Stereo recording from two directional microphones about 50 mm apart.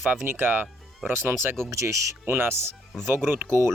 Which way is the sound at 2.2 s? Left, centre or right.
Right.